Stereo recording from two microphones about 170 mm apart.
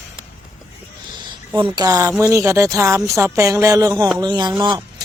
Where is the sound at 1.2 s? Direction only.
25° right (ahead or behind).